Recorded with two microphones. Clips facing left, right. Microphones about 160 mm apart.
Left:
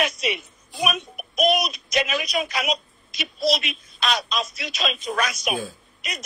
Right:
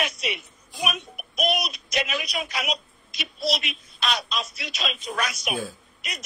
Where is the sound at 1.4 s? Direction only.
90° left.